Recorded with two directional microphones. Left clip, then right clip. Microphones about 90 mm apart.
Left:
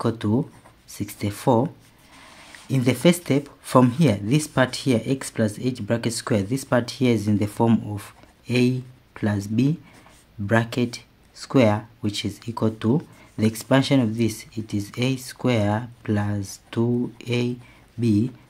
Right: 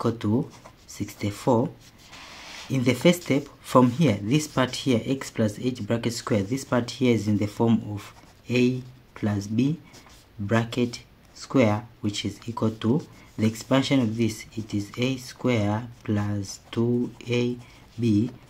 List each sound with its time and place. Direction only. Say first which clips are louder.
0.0 s speech: left 2 dB; 35° left (ahead or behind)
2.7 s speech: left 1 dB; 35° left (ahead or behind)